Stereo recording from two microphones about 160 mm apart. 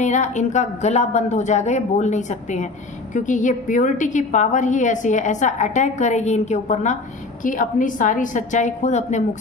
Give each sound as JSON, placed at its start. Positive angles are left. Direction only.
{"t": 0.0, "sound": "a woman's voice", "side_deg": 50}